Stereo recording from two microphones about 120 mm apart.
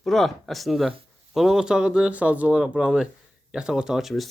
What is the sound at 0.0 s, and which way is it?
Speech, centre (ahead or behind).